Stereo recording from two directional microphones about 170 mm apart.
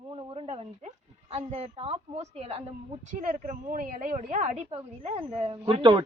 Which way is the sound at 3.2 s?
50° right (ahead or behind).